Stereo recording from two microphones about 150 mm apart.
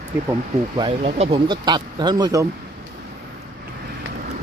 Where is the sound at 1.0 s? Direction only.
40° right (ahead or behind); by 2.4 s 25° right (ahead or behind).